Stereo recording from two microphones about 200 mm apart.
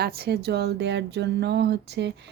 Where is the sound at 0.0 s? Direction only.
55° right (ahead or behind).